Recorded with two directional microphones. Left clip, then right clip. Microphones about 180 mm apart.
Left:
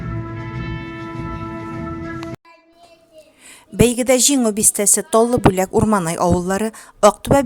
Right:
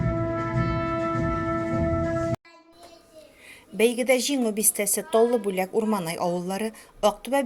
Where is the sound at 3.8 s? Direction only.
50° left (ahead or behind).